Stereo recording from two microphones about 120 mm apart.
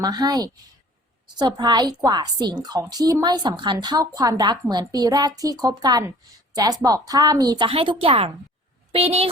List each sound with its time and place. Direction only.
0.0 s a woman's voice: 35° right (ahead or behind); by 9.3 s 55° right (ahead or behind)